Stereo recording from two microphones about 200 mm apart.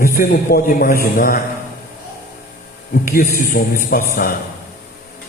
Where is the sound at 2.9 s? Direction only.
45° left (ahead or behind).